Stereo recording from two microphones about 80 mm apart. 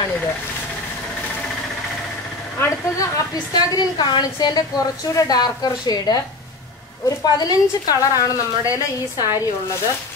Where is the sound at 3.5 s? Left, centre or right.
Left.